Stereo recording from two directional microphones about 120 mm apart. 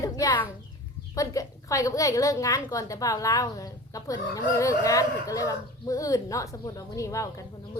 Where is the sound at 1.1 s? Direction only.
30° left (ahead or behind).